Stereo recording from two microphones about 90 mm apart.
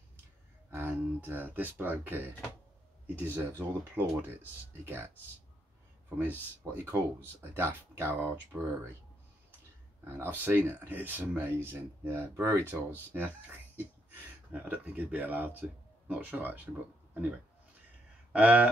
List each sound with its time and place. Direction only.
0.7 s speech: 25° right (ahead or behind)
10.0 s speech: 25° right (ahead or behind)
13.1 s speech: 20° right (ahead or behind)
18.3 s speech: 15° right (ahead or behind)